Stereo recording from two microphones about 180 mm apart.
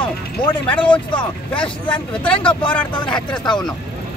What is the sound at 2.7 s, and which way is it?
Speech, 10° left (ahead or behind).